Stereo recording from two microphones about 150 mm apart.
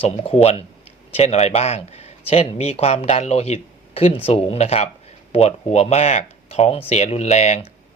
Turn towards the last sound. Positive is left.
turn(degrees=50)  # may be behind; listen again after turning